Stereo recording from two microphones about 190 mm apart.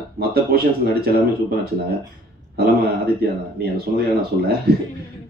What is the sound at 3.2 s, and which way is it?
Speech, 55° right (ahead or behind).